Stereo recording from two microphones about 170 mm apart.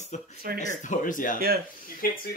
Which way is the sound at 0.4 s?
60° right (ahead or behind).